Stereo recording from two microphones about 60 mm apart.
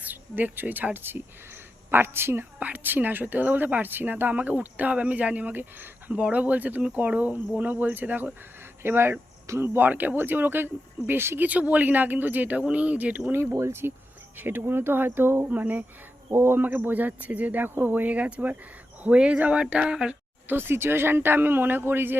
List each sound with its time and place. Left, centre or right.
0.0 s speech: right
2.6 s speech: right
11.4 s speech: right
13.3 s speech: right
16.3 s speech: right
16.6 s speech: right; by 20.1 s centre
20.5 s speech: right